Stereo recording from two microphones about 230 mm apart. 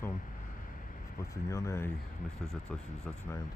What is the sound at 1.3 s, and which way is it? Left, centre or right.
Speech, centre.